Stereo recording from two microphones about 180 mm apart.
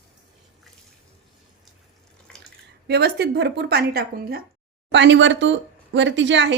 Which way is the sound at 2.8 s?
65° right (ahead or behind).